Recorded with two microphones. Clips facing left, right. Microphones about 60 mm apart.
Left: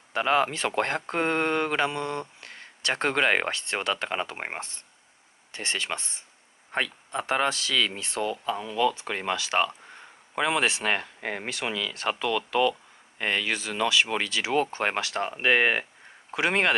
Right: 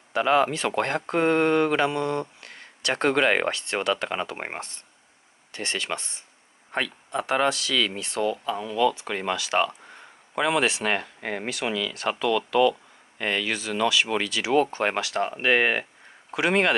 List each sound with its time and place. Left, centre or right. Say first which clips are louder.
0.1 s speech: right 3 dB; left
5.5 s speech: right 1 dB; left